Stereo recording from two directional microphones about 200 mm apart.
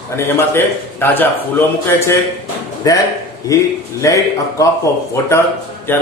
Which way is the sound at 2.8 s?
15° left (ahead or behind).